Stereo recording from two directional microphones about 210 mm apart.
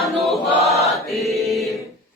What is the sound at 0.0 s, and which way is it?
Chant, centre (ahead or behind).